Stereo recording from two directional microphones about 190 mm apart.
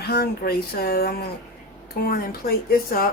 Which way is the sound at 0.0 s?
55° left (ahead or behind).